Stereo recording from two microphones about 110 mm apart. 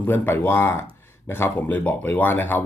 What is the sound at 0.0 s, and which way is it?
Speech, 20° left (ahead or behind).